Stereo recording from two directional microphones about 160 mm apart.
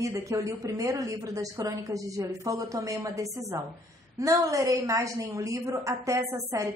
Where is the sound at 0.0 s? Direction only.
20° right (ahead or behind).